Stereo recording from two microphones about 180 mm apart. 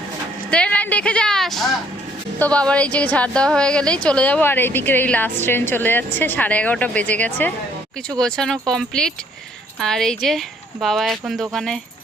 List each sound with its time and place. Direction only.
0.5 s a woman's voice: 5° left (ahead or behind)